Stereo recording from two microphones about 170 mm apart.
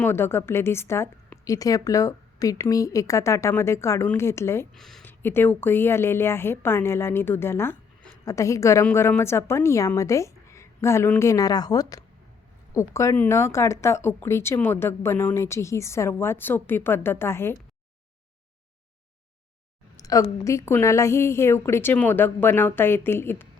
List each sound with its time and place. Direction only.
0.0 s a woman's voice: 15° left (ahead or behind)
4.7 s speech: centre (ahead or behind)
5.0 s a woman's voice: 10° left (ahead or behind)
20.0 s a woman's voice: 20° left (ahead or behind)